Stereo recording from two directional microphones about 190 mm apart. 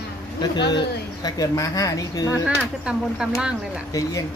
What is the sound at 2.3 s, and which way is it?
Speech, 5° right (ahead or behind).